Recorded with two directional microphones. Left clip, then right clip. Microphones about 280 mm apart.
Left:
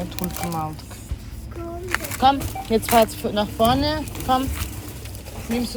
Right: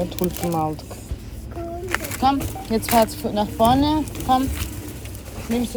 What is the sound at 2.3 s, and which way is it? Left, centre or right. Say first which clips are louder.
Speech: left 2 dB; centre.